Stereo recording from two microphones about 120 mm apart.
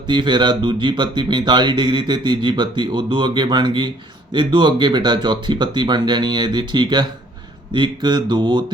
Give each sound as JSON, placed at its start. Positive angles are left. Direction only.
{"t": 0.1, "sound": "speech", "side_deg": -40}